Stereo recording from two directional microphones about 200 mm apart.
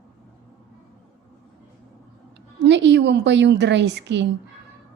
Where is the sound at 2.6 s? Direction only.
60° right (ahead or behind).